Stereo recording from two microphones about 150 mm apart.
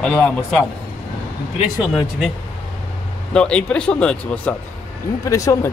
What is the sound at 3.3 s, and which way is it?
Speech, 5° left (ahead or behind).